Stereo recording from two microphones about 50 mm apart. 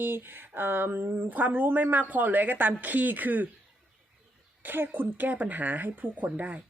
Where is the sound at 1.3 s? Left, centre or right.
Right.